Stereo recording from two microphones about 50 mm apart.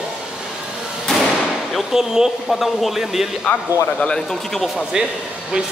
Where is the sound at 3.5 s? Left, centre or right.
Left.